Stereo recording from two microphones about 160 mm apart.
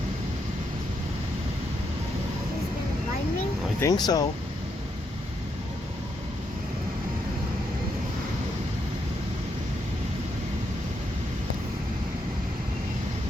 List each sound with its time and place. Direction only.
3.8 s speech: 25° left (ahead or behind)